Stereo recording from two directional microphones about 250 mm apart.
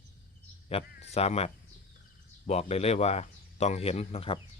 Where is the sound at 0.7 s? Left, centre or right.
Left.